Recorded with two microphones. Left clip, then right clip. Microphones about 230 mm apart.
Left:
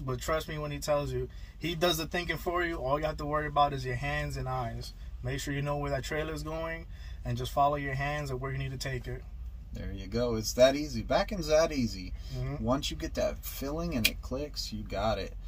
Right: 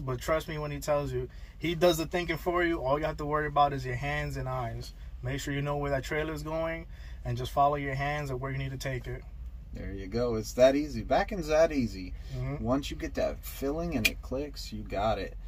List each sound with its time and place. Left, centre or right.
0.0 s speech: centre
9.8 s speech: left